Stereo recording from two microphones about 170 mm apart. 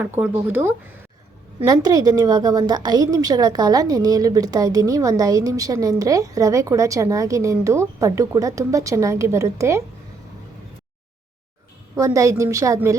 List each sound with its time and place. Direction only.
0.0 s speech: 10° right (ahead or behind)
1.6 s a woman's voice: 20° right (ahead or behind)
11.9 s a woman's voice: 20° right (ahead or behind)